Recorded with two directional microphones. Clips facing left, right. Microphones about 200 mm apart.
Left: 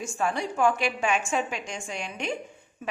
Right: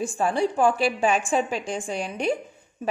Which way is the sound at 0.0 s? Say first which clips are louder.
Right 5 dB; 35° right (ahead or behind).